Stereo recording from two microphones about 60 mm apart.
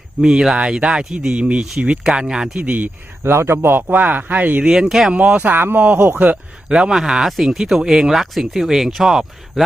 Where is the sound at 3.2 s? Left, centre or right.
Right.